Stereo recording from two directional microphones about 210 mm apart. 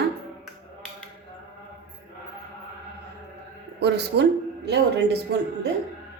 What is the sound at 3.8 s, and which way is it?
A woman's voice, 55° right (ahead or behind).